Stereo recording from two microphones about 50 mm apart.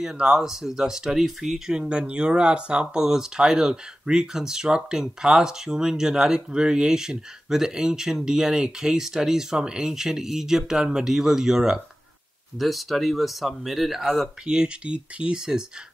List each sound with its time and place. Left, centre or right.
0.0 s speech: centre
1.7 s speech: centre
12.5 s speech: centre
14.4 s speech: centre